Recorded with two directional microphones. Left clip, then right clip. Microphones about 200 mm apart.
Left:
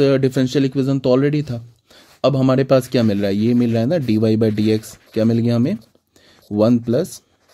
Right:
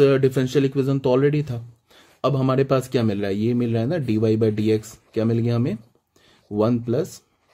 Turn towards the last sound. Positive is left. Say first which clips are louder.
# left 5 dB
turn(degrees=30)  # may be behind; listen again after turning